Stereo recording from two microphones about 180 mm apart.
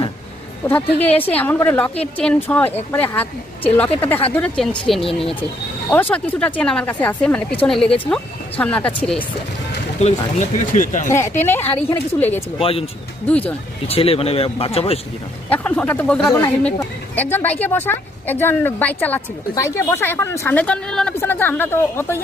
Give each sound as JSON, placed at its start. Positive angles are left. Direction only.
{"t": 0.7, "sound": "speech", "side_deg": 10}
{"t": 10.0, "sound": "speech", "side_deg": 40}
{"t": 11.1, "sound": "speech", "side_deg": 15}
{"t": 12.5, "sound": "speech", "side_deg": 30}
{"t": 15.4, "sound": "speech", "side_deg": 10}